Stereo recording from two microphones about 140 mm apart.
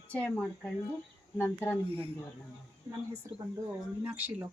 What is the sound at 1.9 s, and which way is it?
Speech, 40° right (ahead or behind).